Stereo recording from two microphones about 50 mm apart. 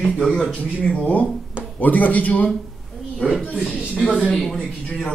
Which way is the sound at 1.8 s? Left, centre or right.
Left.